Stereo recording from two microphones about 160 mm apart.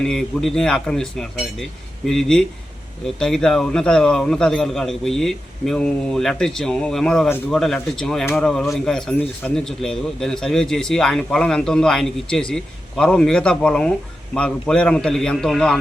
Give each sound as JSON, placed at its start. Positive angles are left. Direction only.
{"t": 0.0, "sound": "speech", "side_deg": 5}